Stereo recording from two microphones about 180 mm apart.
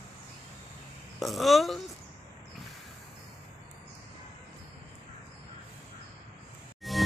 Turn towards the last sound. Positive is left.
turn(degrees=0)  # may be behind; listen again after turning